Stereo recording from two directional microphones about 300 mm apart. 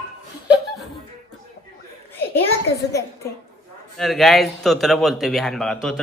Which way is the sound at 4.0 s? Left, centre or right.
Centre.